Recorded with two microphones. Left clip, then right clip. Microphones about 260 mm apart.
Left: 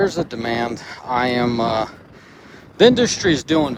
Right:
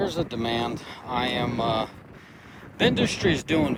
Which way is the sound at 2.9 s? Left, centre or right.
Left.